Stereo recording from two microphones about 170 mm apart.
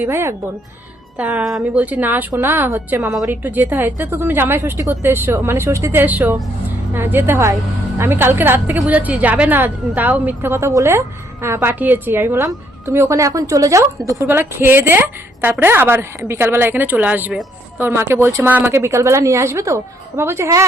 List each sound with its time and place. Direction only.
0.0 s a woman's voice: 15° right (ahead or behind)